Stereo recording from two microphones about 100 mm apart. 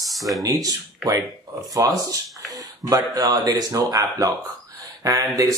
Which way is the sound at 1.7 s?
35° right (ahead or behind).